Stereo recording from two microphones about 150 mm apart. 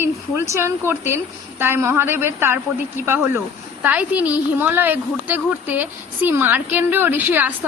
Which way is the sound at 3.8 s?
10° right (ahead or behind).